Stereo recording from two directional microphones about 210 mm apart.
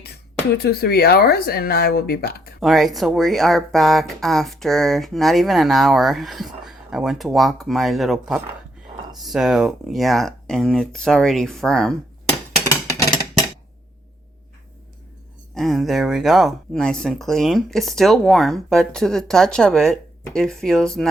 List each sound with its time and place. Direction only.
0.0 s speech: 50° left (ahead or behind)
2.6 s speech: centre (ahead or behind)
12.6 s a sound: 15° left (ahead or behind)
15.5 s speech: centre (ahead or behind)